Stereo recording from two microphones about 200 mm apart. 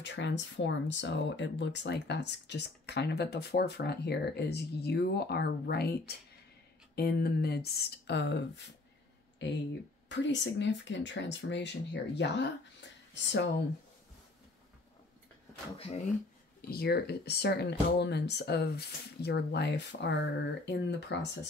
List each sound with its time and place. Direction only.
0.0 s speech: 65° left (ahead or behind)
9.4 s speech: 65° left (ahead or behind)
16.6 s speech: 50° left (ahead or behind)